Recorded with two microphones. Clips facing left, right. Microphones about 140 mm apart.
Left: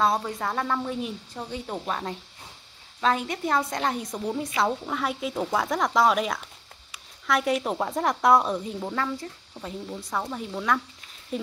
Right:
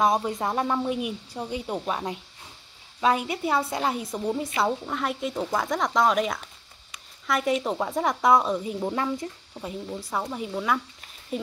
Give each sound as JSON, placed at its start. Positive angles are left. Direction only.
{"t": 0.0, "sound": "a woman's voice", "side_deg": -20}
{"t": 8.9, "sound": "speech", "side_deg": -20}
{"t": 9.6, "sound": "speech", "side_deg": -5}